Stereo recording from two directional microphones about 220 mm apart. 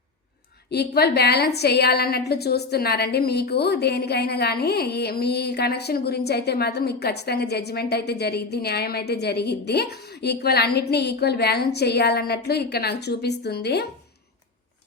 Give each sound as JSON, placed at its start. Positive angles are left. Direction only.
{"t": 0.7, "sound": "a woman's voice", "side_deg": 45}